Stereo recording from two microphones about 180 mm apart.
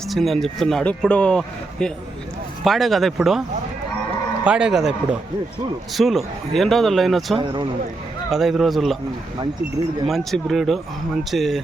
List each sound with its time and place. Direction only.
0.1 s speech: centre (ahead or behind)
4.4 s speech: 5° right (ahead or behind)
7.3 s speech: 25° right (ahead or behind)
8.3 s speech: centre (ahead or behind)
10.1 s speech: centre (ahead or behind)